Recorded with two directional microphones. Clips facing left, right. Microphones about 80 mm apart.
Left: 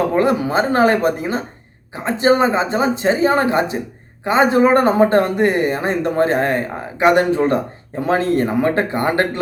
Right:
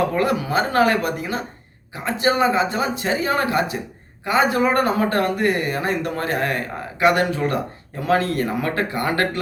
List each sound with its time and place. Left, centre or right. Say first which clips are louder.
0.1 s speech: left 4 dB; left